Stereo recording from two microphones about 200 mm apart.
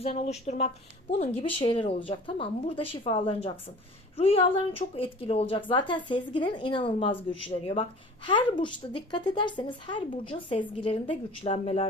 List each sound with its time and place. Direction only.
0.0 s speech: 30° left (ahead or behind)